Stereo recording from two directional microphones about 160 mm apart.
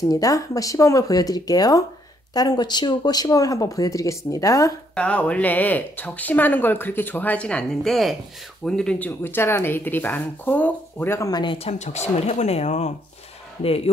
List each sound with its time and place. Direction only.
0.1 s speech: 20° left (ahead or behind)
4.9 s speech: 5° left (ahead or behind); by 11.5 s 25° left (ahead or behind)
11.5 s speech: 40° left (ahead or behind)